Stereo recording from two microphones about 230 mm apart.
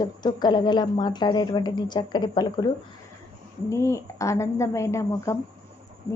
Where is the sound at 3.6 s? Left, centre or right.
Centre.